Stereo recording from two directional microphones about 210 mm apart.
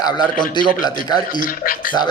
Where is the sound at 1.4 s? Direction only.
45° left (ahead or behind).